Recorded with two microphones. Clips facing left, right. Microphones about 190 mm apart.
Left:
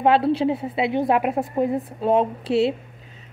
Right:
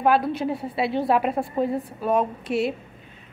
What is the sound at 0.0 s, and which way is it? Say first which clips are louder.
A woman's voice: left 3 dB; 25° left (ahead or behind).